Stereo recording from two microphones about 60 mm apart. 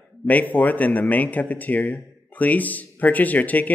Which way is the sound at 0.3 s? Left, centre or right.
Left.